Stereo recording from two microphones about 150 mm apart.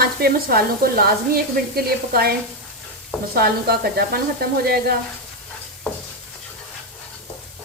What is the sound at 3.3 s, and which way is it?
Sizzle, 90° right.